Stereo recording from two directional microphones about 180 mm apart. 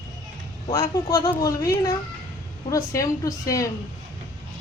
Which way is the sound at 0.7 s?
20° left (ahead or behind).